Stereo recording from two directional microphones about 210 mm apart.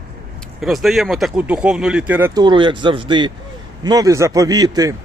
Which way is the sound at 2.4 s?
20° right (ahead or behind).